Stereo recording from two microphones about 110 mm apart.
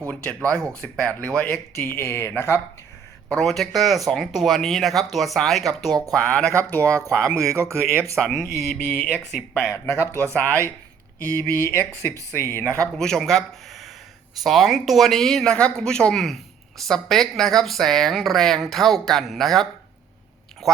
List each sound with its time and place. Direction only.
0.1 s speech: 10° left (ahead or behind)
3.2 s speech: 5° left (ahead or behind)
7.3 s speech: 30° right (ahead or behind)
8.1 s speech: 5° left (ahead or behind)
9.7 s speech: 25° left (ahead or behind)
10.3 s speech: 15° left (ahead or behind)
12.8 s speech: 5° left (ahead or behind)